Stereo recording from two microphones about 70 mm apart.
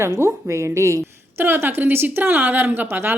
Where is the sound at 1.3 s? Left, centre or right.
Right.